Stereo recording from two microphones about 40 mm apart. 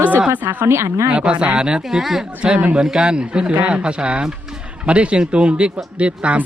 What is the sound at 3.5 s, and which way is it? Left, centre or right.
Speech, right.